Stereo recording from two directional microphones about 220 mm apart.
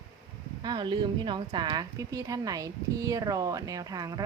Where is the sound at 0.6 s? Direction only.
20° right (ahead or behind).